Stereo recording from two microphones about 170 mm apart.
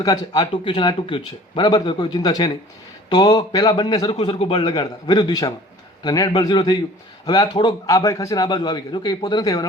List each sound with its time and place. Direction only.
0.0 s speech: 20° left (ahead or behind)